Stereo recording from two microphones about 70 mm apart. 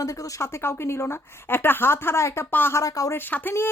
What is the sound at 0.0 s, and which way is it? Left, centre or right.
Speech, left.